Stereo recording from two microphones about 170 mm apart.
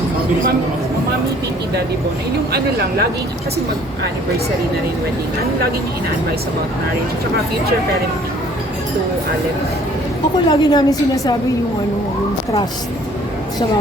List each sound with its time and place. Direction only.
2.5 s speech: 75° right (ahead or behind)
10.3 s a woman's voice: 25° left (ahead or behind)